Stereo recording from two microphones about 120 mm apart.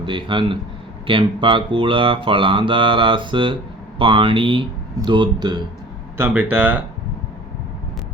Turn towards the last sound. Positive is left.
turn(degrees=-15)  # may be behind; listen again after turning